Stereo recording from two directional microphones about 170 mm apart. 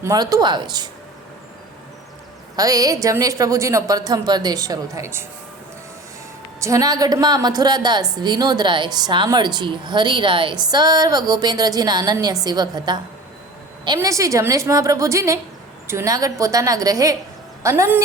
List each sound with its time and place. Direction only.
0.0 s a woman's voice: 20° right (ahead or behind)
2.6 s a woman's voice: 20° right (ahead or behind)
6.6 s a woman's voice: 20° right (ahead or behind)